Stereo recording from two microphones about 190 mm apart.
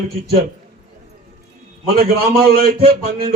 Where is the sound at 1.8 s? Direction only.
55° right (ahead or behind).